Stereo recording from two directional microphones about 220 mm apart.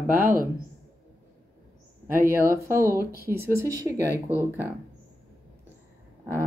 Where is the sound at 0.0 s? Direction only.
10° right (ahead or behind).